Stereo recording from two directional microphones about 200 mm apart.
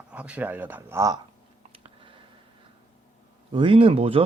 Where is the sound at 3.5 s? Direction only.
25° right (ahead or behind).